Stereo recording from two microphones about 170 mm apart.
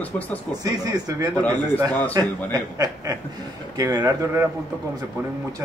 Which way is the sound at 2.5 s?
20° right (ahead or behind).